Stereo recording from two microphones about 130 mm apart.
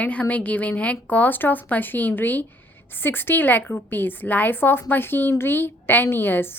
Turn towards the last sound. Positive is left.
turn(degrees=15)  # may be behind; listen again after turning